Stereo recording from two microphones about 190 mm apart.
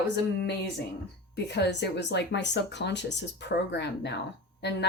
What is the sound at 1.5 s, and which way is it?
Speech, 65° left (ahead or behind).